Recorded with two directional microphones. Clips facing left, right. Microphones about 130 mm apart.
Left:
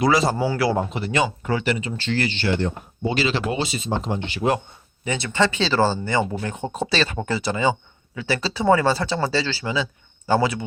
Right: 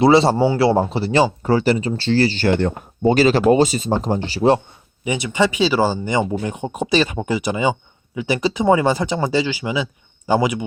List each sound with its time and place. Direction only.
0.0 s speech: 30° right (ahead or behind); by 2.7 s 55° right (ahead or behind)
3.0 s speech: 45° right (ahead or behind)
5.0 s speech: 15° right (ahead or behind)